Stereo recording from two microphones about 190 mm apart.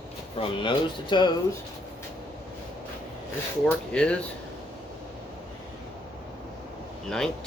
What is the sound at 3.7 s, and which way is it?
Speech, 5° left (ahead or behind).